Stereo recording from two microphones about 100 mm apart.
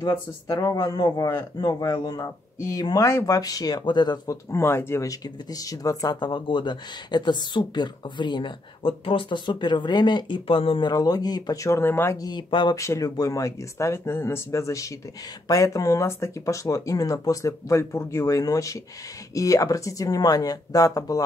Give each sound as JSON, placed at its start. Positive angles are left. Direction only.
{"t": 0.0, "sound": "speech", "side_deg": 40}
{"t": 4.5, "sound": "speech", "side_deg": 25}
{"t": 5.5, "sound": "speech", "side_deg": 35}
{"t": 6.1, "sound": "speech", "side_deg": 50}
{"t": 10.9, "sound": "speech", "side_deg": 40}
{"t": 12.2, "sound": "speech", "side_deg": 45}
{"t": 12.7, "sound": "speech", "side_deg": 30}